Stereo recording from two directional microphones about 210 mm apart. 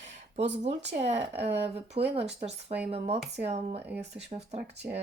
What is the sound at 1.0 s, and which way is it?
Speech, 30° right (ahead or behind).